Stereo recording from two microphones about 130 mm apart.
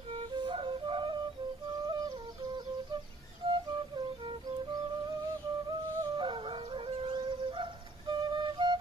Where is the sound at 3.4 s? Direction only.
45° right (ahead or behind).